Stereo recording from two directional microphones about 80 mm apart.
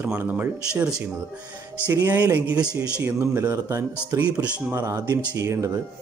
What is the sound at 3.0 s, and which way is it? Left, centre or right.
Speech, right.